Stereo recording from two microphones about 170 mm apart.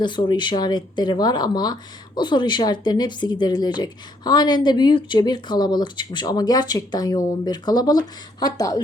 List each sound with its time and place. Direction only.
0.0 s speech: 25° left (ahead or behind)